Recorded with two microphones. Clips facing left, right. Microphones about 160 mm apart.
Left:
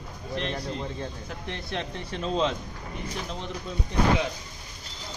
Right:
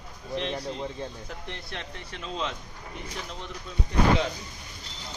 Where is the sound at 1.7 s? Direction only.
30° left (ahead or behind).